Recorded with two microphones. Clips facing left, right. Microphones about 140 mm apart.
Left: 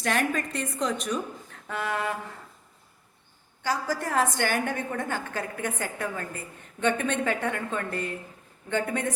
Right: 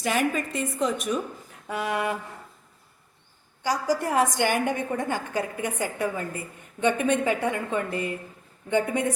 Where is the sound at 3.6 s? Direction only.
15° right (ahead or behind).